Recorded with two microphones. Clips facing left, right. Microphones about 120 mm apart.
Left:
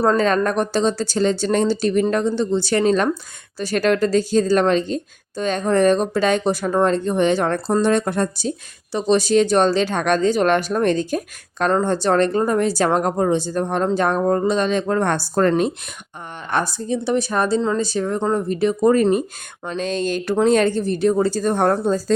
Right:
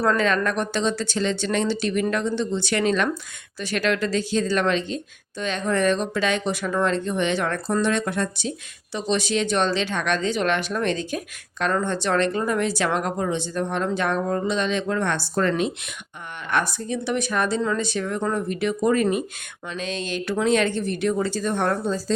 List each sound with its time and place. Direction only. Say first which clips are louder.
0.0 s speech: left 4 dB; 30° left (ahead or behind)
16.5 s speech: left 3 dB; 30° left (ahead or behind)